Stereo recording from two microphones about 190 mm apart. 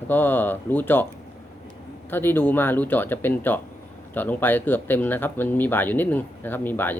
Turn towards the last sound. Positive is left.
turn(degrees=10)  # may be behind; listen again after turning